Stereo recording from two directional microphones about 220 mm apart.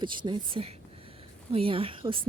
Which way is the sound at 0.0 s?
20° right (ahead or behind).